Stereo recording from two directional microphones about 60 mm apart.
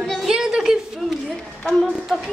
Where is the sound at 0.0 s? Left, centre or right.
Centre.